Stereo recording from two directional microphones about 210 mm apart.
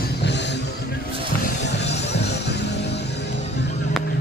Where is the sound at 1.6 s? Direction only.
55° left (ahead or behind).